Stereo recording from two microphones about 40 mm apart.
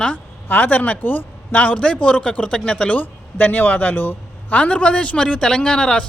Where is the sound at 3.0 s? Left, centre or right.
Left.